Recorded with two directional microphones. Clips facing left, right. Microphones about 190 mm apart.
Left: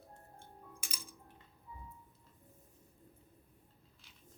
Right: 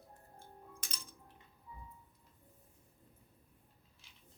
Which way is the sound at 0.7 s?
10° left (ahead or behind).